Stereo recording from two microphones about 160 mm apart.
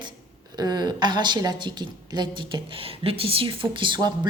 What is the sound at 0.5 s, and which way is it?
A woman's voice, 25° right (ahead or behind).